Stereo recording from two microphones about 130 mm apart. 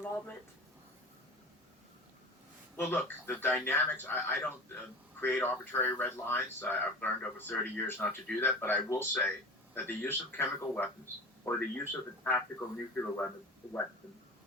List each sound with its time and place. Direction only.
2.7 s speech: 15° left (ahead or behind)